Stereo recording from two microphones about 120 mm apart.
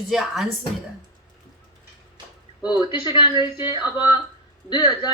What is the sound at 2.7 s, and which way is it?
Speech, 40° left (ahead or behind).